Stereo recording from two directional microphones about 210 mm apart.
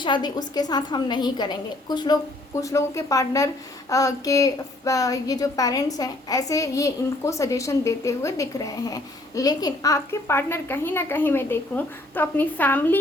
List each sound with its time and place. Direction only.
0.0 s a woman's voice: 20° left (ahead or behind)